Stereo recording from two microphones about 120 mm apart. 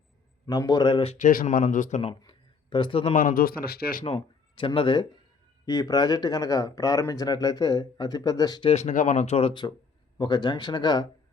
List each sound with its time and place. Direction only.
0.4 s speech: 30° left (ahead or behind); by 1.2 s 50° left (ahead or behind)
1.2 s speech: 90° left
2.0 s a sound: 45° left (ahead or behind)
3.0 s speech: 60° left (ahead or behind)
4.0 s speech: 50° left (ahead or behind)
5.6 s speech: 30° left (ahead or behind)
8.7 s speech: 80° left; by 9.6 s 60° left (ahead or behind)
10.2 s speech: 35° left (ahead or behind)